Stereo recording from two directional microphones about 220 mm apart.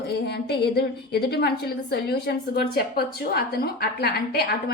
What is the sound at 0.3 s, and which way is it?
A woman's voice, 50° left (ahead or behind).